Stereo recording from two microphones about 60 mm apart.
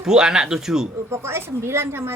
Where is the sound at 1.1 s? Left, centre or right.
Right.